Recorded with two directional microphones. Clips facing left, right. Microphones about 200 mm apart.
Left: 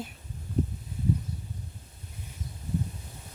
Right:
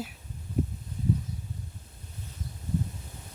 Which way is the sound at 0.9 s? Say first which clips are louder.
Even; 5° left (ahead or behind).